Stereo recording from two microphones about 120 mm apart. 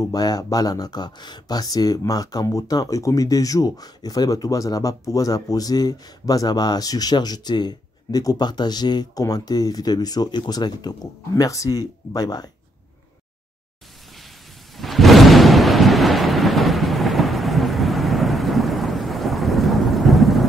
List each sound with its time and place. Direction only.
0.1 s speech: 30° left (ahead or behind)
14.8 s thunder: centre (ahead or behind)